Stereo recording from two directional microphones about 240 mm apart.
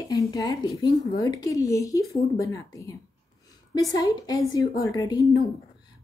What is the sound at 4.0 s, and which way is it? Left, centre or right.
A woman's voice, centre.